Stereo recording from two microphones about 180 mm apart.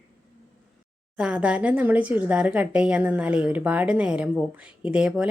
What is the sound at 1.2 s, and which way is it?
A woman's voice, 5° right (ahead or behind).